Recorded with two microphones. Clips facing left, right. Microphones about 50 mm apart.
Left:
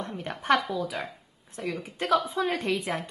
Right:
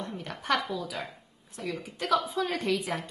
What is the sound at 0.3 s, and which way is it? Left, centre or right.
Speech, left.